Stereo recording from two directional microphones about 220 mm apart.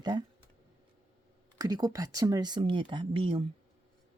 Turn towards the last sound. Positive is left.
turn(degrees=-25)  # may be behind; listen again after turning